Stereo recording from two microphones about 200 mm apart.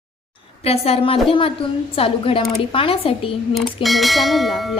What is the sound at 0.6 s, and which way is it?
A woman's voice, 30° left (ahead or behind).